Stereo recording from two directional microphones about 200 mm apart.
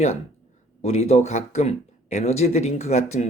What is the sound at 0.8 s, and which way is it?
Speech, 30° left (ahead or behind).